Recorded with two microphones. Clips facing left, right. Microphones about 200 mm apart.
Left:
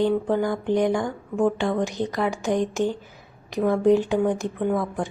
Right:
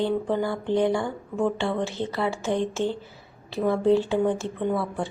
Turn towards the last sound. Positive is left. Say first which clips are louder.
# left 2 dB
turn(degrees=15)  # may be behind; listen again after turning